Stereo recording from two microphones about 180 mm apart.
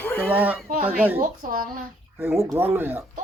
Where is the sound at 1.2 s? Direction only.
50° right (ahead or behind).